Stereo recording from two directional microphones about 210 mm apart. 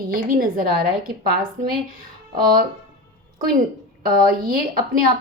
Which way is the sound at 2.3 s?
20° right (ahead or behind).